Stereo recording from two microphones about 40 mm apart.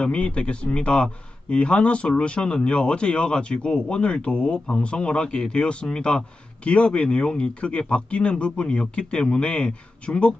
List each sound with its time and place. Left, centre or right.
0.0 s a man's voice: left